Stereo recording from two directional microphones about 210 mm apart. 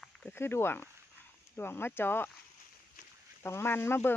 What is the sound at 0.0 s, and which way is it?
Speech, 5° left (ahead or behind).